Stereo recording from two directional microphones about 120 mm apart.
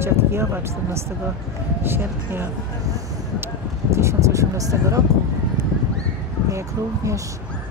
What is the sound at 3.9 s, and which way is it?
Speech, 25° right (ahead or behind).